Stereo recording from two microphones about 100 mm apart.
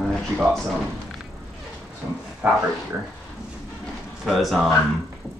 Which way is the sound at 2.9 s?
25° right (ahead or behind).